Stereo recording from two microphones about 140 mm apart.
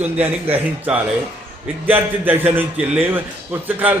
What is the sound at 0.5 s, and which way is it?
A man's voice, 10° right (ahead or behind).